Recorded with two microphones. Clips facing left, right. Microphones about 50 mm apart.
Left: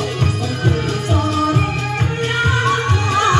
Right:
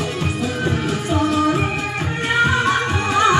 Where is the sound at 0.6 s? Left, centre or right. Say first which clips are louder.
Left 4 dB; centre.